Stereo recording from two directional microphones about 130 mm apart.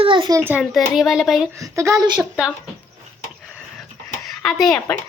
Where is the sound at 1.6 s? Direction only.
25° right (ahead or behind).